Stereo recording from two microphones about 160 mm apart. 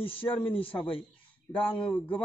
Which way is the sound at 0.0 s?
35° left (ahead or behind).